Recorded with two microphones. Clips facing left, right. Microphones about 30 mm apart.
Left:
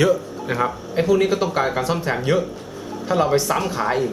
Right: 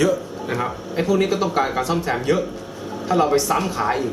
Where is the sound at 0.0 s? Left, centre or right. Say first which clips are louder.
Left 1 dB; centre.